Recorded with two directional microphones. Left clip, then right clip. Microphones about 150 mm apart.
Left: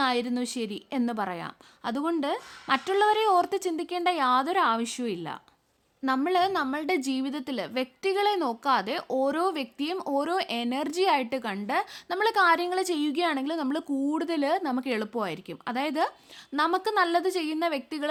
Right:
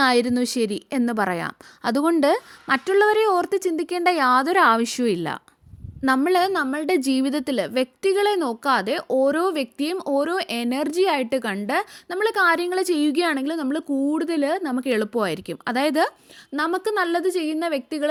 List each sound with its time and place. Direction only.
0.0 s speech: 40° right (ahead or behind)
2.6 s a woman's voice: 25° right (ahead or behind)
12.0 s a woman's voice: 20° right (ahead or behind); by 16.1 s 35° right (ahead or behind)
16.6 s a woman's voice: 20° right (ahead or behind)